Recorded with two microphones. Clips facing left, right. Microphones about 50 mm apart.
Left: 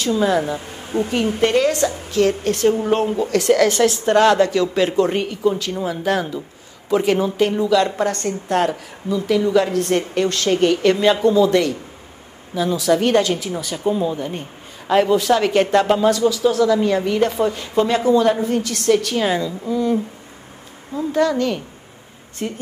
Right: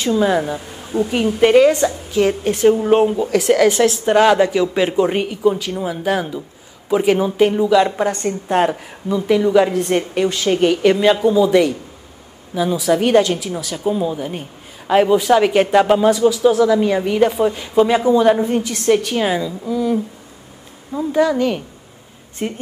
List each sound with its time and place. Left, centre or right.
0.0 s a woman's voice: centre
0.6 s a sound: left
1.4 s a woman's voice: centre
20.9 s a woman's voice: centre